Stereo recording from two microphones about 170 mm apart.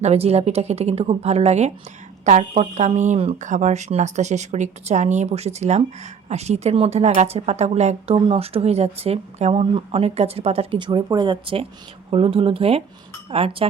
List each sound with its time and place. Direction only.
0.0 s speech: 40° right (ahead or behind)